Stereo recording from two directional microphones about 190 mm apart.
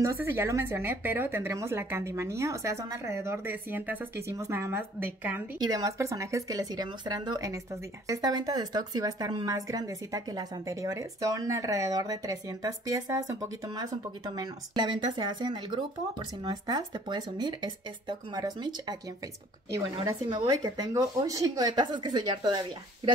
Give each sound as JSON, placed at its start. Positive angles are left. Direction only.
{"t": 0.0, "sound": "speech", "side_deg": -15}